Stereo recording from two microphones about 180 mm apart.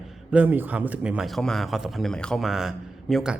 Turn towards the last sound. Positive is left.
turn(degrees=0)  # may be behind; listen again after turning